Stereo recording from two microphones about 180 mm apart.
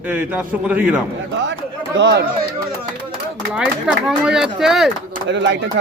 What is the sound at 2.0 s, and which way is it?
Speech, 70° right (ahead or behind).